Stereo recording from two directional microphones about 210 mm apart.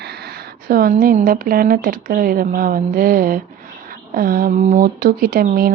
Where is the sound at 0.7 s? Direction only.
45° right (ahead or behind).